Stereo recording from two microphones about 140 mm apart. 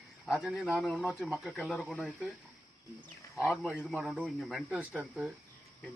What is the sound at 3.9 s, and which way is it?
Speech, centre (ahead or behind).